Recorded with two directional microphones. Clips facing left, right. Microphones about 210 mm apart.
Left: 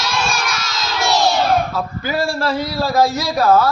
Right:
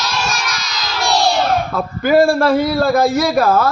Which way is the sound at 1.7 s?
55° right (ahead or behind).